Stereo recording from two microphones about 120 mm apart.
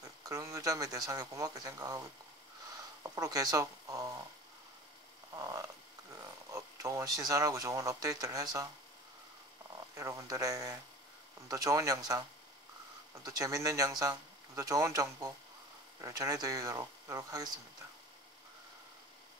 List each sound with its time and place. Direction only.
0.2 s speech: 25° right (ahead or behind)
5.3 s a sound: 30° right (ahead or behind)
6.5 s speech: 25° right (ahead or behind)
9.9 s speech: 25° right (ahead or behind)